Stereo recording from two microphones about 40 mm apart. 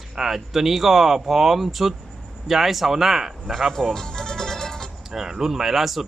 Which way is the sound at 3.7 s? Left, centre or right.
Centre.